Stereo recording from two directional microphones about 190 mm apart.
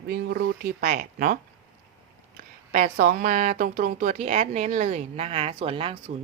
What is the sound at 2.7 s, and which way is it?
Speech, 45° right (ahead or behind).